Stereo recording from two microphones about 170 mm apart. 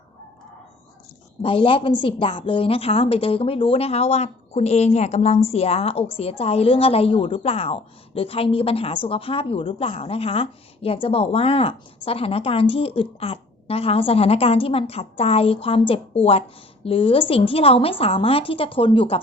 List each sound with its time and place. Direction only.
1.4 s a woman's voice: 30° left (ahead or behind)